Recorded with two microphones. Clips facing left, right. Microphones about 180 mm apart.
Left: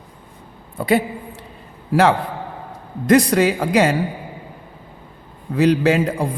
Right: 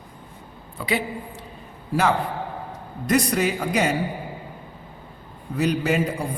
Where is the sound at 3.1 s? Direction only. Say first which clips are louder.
Left 7 dB; 90° left.